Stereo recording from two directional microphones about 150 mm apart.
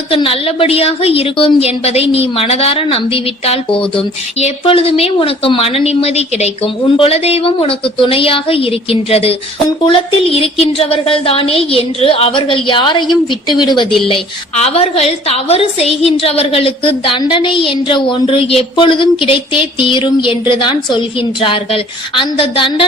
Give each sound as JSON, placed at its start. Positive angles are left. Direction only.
{"t": 0.1, "sound": "a woman's voice", "side_deg": 40}
{"t": 14.1, "sound": "a woman's voice", "side_deg": 45}